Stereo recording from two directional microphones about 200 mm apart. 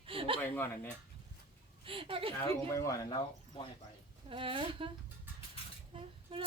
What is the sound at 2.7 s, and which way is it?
Speech, 15° left (ahead or behind).